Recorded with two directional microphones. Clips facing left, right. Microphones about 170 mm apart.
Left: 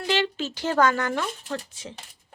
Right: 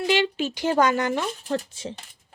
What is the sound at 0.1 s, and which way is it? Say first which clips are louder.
Speech: right 1 dB; 15° right (ahead or behind).